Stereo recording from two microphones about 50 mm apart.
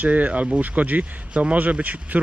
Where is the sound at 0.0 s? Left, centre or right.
Right.